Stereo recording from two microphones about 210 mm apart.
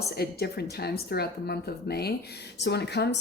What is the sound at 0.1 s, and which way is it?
Speech, 50° left (ahead or behind).